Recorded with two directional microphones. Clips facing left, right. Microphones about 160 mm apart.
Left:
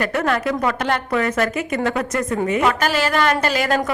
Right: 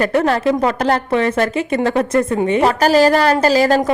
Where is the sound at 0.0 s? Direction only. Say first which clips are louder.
Right 5 dB; 30° right (ahead or behind).